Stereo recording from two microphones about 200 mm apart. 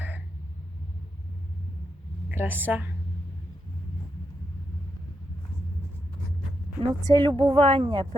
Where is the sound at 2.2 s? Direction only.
10° right (ahead or behind).